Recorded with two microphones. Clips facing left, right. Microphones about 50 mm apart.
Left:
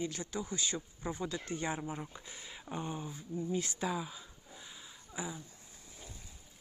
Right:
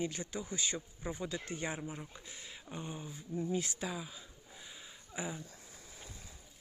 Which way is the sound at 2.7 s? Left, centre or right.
Centre.